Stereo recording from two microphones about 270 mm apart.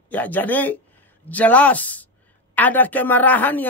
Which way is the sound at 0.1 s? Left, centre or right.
Centre.